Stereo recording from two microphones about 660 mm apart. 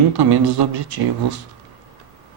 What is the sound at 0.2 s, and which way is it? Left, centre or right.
Speech, right.